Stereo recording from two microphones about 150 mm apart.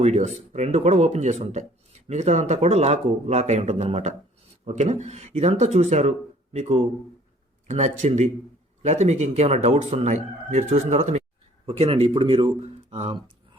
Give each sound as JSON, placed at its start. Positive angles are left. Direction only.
{"t": 0.0, "sound": "speech", "side_deg": -50}